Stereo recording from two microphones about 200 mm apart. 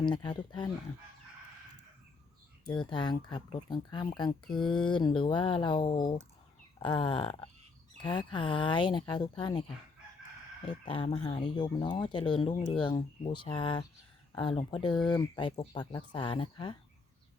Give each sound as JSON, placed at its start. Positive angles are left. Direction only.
{"t": 0.0, "sound": "speech", "side_deg": 20}
{"t": 2.6, "sound": "speech", "side_deg": 20}
{"t": 4.6, "sound": "speech", "side_deg": 5}
{"t": 4.9, "sound": "speech", "side_deg": 25}
{"t": 10.8, "sound": "speech", "side_deg": 25}